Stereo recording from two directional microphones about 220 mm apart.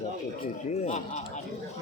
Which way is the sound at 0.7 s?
30° left (ahead or behind).